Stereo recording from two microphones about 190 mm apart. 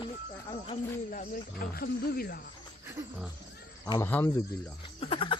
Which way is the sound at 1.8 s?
50° left (ahead or behind).